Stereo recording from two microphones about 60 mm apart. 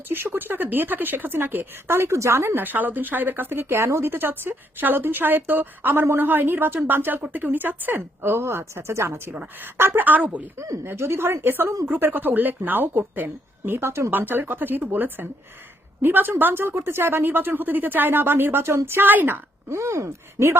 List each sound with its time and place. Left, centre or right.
0.1 s speech: right
2.6 s speech: right
10.8 s speech: right
13.7 s speech: right
14.1 s speech: right
19.7 s speech: right